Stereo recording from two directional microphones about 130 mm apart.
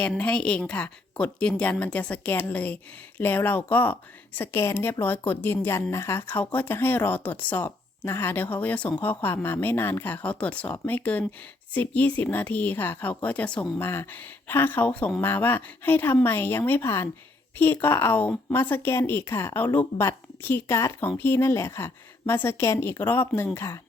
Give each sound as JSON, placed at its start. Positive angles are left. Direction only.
{"t": 0.2, "sound": "a woman's voice", "side_deg": 10}